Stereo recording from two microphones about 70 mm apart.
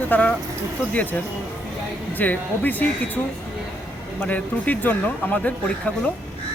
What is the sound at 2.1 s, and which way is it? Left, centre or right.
Speech, left.